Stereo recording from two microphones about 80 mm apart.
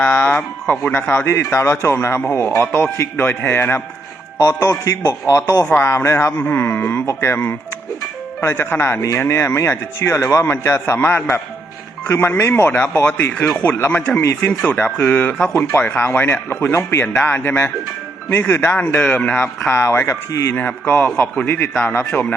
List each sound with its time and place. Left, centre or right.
0.0 s music: left
0.9 s speech: left
4.4 s speech: left
20.6 s speech: left